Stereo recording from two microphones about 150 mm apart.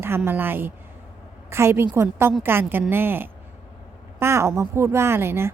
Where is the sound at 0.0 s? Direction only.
15° right (ahead or behind).